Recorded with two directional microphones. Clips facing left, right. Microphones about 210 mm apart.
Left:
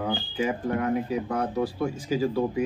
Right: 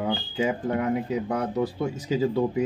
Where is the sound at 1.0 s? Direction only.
20° right (ahead or behind).